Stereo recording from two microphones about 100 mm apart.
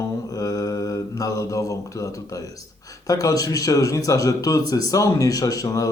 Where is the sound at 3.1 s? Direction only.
35° left (ahead or behind).